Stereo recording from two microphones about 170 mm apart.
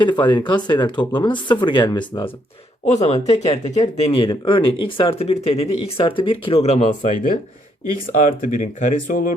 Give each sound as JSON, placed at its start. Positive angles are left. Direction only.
{"t": 0.0, "sound": "speech", "side_deg": 25}
{"t": 2.8, "sound": "speech", "side_deg": 40}